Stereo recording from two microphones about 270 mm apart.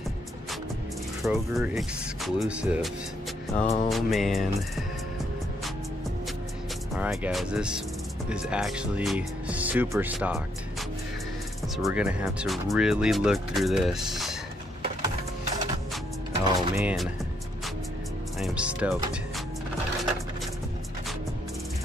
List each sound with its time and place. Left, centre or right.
1.2 s speech: centre
3.6 s music: left
3.9 s speech: centre
7.0 s speech: centre
11.7 s speech: centre
16.4 s speech: centre
18.4 s speech: centre